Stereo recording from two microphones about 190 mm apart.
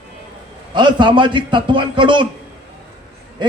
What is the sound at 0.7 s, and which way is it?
Speech, 25° right (ahead or behind).